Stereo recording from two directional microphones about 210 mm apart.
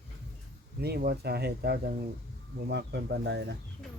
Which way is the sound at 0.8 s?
50° right (ahead or behind).